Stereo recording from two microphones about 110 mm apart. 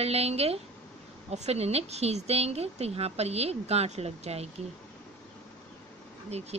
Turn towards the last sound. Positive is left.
turn(degrees=-70)  # may be behind; listen again after turning